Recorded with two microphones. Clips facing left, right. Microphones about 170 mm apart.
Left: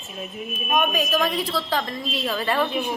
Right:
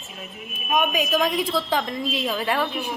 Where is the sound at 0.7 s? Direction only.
15° right (ahead or behind).